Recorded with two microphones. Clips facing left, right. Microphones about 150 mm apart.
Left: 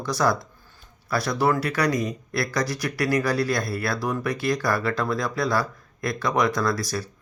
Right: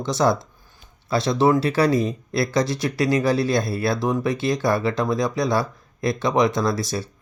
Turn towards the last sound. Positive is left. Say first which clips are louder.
# right 2 dB
turn(degrees=-25)  # may be behind; listen again after turning